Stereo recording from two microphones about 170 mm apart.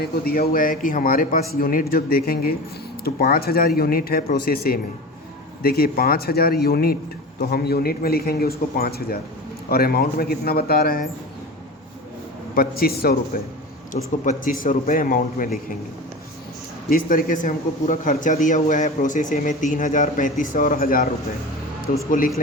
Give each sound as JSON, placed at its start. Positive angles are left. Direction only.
{"t": 0.0, "sound": "a man's voice", "side_deg": 60}
{"t": 12.5, "sound": "a man's voice", "side_deg": 65}
{"t": 13.9, "sound": "speech", "side_deg": 50}
{"t": 16.9, "sound": "a man's voice", "side_deg": 55}